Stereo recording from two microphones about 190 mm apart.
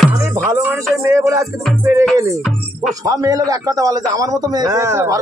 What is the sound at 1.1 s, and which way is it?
Music, 15° right (ahead or behind).